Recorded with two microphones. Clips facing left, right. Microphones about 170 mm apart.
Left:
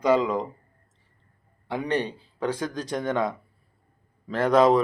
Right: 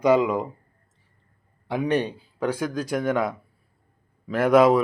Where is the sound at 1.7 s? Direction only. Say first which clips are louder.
Right 3 dB; 10° right (ahead or behind).